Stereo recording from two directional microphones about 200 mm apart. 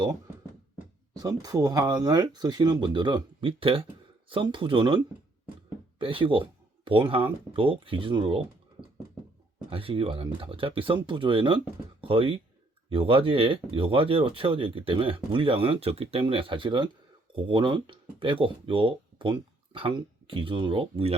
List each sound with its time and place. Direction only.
1.1 s speech: 20° right (ahead or behind)
6.0 s speech: 25° right (ahead or behind)
9.6 s speech: 25° right (ahead or behind)